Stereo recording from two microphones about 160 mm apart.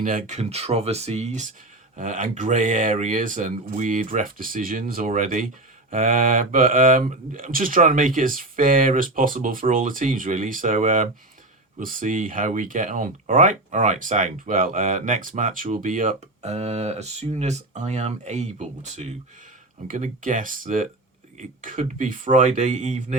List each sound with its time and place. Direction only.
0.0 s speech: 55° right (ahead or behind)